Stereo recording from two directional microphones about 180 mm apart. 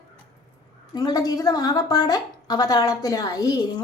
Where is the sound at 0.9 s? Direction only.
20° left (ahead or behind).